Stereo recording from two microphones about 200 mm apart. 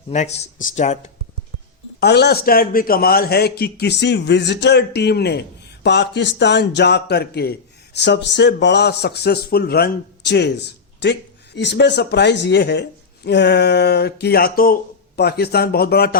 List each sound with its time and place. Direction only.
0.1 s speech: 35° left (ahead or behind)
2.0 s a man's voice: 55° left (ahead or behind)